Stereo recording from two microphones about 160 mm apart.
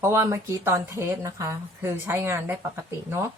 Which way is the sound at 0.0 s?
20° right (ahead or behind).